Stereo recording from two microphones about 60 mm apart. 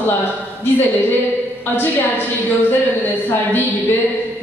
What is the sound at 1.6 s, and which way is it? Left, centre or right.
Speech, left.